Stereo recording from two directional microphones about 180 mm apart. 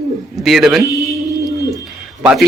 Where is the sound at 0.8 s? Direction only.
20° right (ahead or behind).